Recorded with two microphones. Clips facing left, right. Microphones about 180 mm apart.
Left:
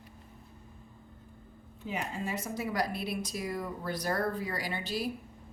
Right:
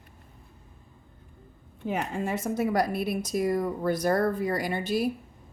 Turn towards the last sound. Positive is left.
turn(degrees=-50)  # may be behind; listen again after turning